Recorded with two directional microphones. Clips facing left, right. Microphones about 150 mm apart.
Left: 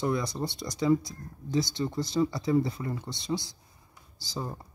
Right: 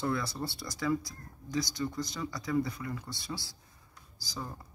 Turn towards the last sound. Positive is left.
turn(degrees=25)  # may be behind; listen again after turning